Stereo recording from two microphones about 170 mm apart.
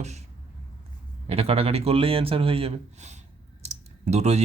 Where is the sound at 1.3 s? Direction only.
35° right (ahead or behind).